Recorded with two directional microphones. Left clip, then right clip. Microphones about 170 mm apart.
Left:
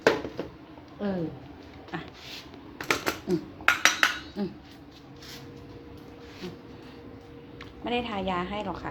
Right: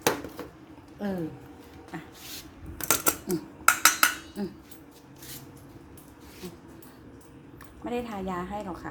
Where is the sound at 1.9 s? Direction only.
5° right (ahead or behind).